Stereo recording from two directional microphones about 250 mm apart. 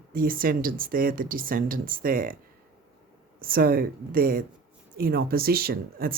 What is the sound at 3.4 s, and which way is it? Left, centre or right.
Speech, right.